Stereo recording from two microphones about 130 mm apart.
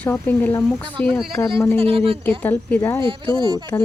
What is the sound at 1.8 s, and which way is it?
Speech, 50° right (ahead or behind).